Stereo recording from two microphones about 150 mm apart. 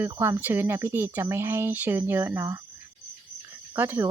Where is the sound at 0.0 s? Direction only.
15° right (ahead or behind).